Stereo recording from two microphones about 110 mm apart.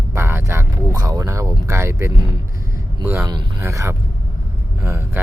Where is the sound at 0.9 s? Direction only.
35° right (ahead or behind).